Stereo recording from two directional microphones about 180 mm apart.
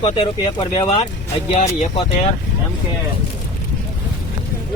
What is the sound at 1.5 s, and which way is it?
Speech, 35° left (ahead or behind).